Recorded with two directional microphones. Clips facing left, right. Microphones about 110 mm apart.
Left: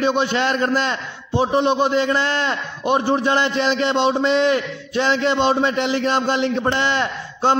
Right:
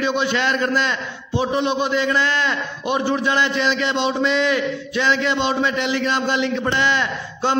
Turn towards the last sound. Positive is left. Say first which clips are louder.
# left 3 dB
turn(degrees=40)  # may be behind; listen again after turning